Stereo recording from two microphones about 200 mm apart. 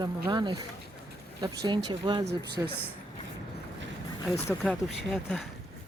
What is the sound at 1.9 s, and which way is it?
Speech, 20° right (ahead or behind).